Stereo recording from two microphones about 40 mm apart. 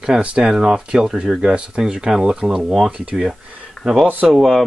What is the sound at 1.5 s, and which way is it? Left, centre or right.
Speech, right.